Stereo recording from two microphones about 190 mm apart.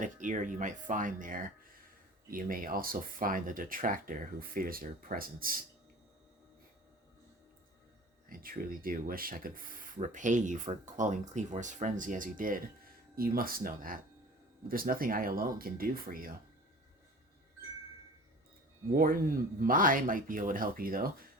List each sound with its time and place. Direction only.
0.0 s speech: 40° right (ahead or behind)
8.3 s speech: 50° right (ahead or behind)
18.9 s speech: 50° right (ahead or behind)